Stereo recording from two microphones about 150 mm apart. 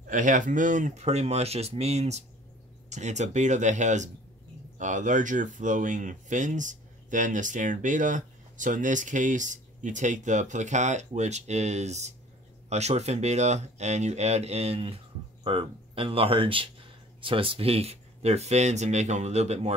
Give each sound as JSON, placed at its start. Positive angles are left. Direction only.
{"t": 0.0, "sound": "speech", "side_deg": -60}